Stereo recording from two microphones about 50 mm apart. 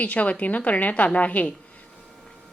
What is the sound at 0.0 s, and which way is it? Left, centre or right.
Speech, left.